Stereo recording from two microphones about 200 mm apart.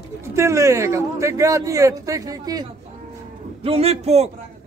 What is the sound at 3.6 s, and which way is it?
Speech, 30° right (ahead or behind).